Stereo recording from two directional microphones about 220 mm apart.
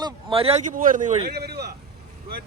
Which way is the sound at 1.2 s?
45° right (ahead or behind).